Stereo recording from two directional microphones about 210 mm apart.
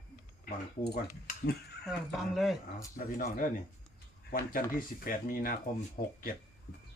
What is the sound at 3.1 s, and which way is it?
Speech, 40° left (ahead or behind).